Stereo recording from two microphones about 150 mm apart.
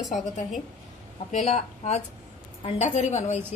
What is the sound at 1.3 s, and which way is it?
A woman's voice, 50° left (ahead or behind).